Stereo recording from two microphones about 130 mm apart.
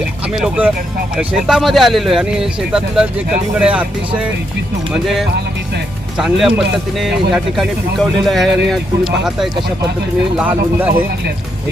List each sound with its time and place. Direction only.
0.3 s speech: 5° right (ahead or behind)
6.1 s speech: 5° right (ahead or behind)